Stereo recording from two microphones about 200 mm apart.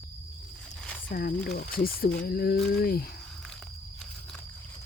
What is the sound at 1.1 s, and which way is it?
Speech, 45° left (ahead or behind).